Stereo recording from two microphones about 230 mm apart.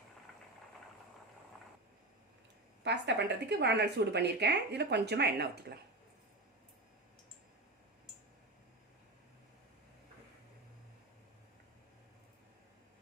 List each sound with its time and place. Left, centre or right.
2.8 s speech: right